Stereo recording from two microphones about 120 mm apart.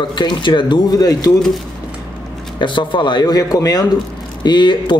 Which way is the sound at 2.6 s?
40° left (ahead or behind).